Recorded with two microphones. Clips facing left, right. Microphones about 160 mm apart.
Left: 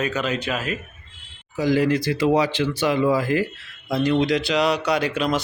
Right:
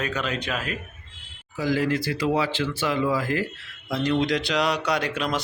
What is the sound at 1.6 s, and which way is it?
A man's voice, 20° left (ahead or behind).